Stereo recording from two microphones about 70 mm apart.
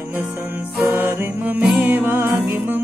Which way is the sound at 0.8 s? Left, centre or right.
Right.